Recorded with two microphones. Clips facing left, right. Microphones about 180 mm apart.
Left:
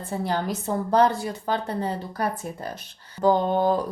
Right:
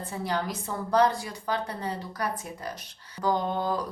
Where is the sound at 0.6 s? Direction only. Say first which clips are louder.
Left 3 dB; 25° left (ahead or behind).